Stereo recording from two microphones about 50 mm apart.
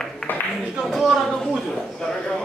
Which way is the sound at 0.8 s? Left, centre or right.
Centre.